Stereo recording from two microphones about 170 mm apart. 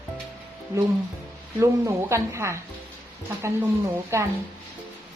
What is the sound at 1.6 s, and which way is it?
A woman's voice, 15° right (ahead or behind).